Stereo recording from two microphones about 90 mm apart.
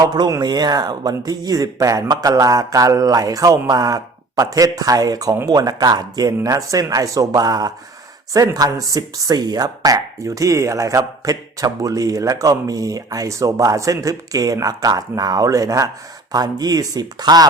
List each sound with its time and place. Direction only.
0.1 s speech: 50° right (ahead or behind)